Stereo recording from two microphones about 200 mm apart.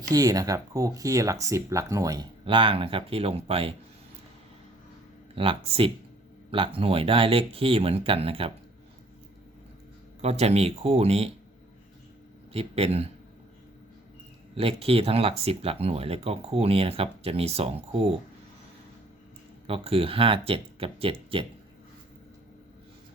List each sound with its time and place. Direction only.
0.1 s speech: 15° right (ahead or behind)
5.3 s speech: 30° right (ahead or behind)
10.2 s speech: 30° right (ahead or behind)
12.5 s speech: 30° right (ahead or behind)
14.5 s speech: 30° right (ahead or behind)
19.6 s speech: 30° right (ahead or behind)